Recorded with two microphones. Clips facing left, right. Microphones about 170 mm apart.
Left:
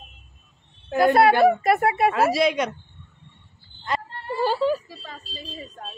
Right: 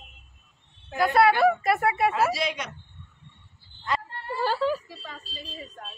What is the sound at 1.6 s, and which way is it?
Speech, 25° left (ahead or behind).